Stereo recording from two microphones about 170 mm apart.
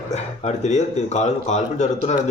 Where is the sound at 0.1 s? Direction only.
45° left (ahead or behind).